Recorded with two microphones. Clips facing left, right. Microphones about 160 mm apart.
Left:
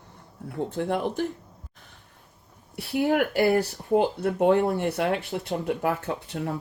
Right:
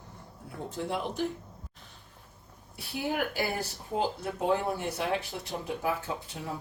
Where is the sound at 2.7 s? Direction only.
70° left (ahead or behind).